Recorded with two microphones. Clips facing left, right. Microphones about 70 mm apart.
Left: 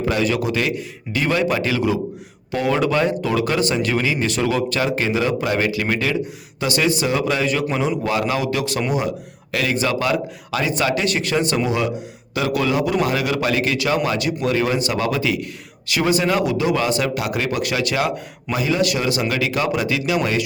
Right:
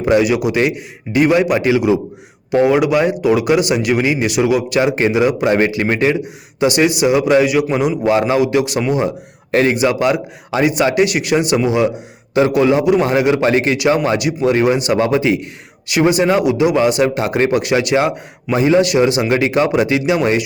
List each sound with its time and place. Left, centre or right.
0.0 s a man's voice: centre
9.7 s a man's voice: centre